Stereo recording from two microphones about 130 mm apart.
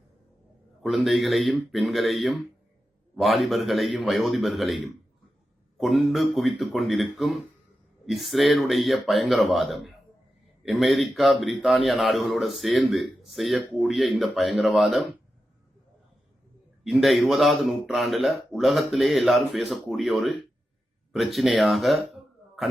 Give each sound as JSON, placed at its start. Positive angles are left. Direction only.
{"t": 0.8, "sound": "speech", "side_deg": 0}
{"t": 16.8, "sound": "speech", "side_deg": 0}